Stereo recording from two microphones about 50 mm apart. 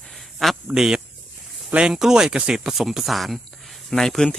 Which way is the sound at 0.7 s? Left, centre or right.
Centre.